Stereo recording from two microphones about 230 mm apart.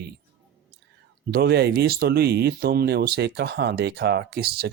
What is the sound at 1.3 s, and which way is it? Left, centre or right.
Speech, right.